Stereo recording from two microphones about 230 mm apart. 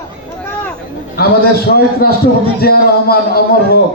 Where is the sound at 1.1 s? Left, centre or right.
Left.